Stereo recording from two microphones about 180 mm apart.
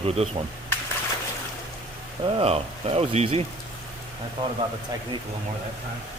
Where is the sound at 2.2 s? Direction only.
30° right (ahead or behind).